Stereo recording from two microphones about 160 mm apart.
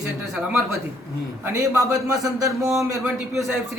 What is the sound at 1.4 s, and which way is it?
A man's voice, 15° right (ahead or behind).